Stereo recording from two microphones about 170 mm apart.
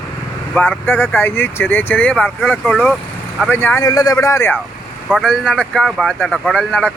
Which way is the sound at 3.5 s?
10° left (ahead or behind).